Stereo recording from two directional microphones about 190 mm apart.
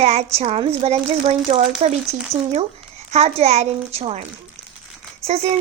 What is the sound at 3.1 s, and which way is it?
A child's voice, 35° right (ahead or behind).